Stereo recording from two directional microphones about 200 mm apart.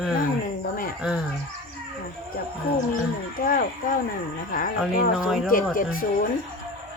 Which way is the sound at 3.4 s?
45° left (ahead or behind).